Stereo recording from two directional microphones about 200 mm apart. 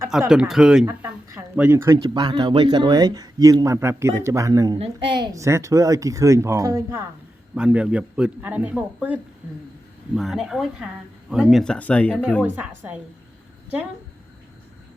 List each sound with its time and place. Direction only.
0.3 s speech: 5° right (ahead or behind)
0.9 s speech: 15° right (ahead or behind)
7.5 s speech: 5° right (ahead or behind)
12.4 s speech: 10° right (ahead or behind)